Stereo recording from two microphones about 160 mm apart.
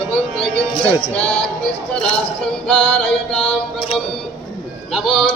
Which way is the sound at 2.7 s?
5° left (ahead or behind).